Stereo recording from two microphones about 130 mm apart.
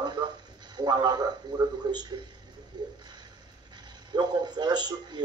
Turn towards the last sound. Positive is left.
turn(degrees=-35)  # may be behind; listen again after turning